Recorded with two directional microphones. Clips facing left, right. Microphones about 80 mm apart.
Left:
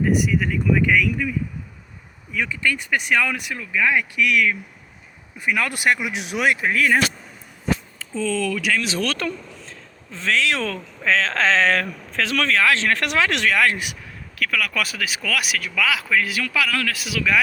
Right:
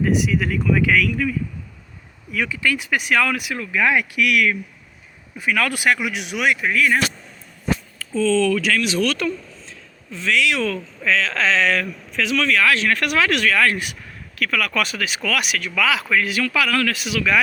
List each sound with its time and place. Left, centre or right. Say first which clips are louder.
0.0 s speech: even; centre
5.5 s speech: right 1 dB; centre
6.2 s speech: left 1 dB; left
8.1 s speech: right 6 dB; centre
8.8 s speech: right 3 dB; left
14.3 s speech: right 2 dB; centre